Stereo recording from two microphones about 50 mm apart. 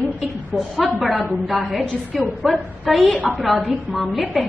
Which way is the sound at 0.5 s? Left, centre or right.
Centre.